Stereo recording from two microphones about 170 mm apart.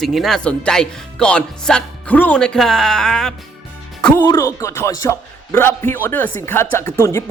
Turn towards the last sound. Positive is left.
turn(degrees=15)  # may be behind; listen again after turning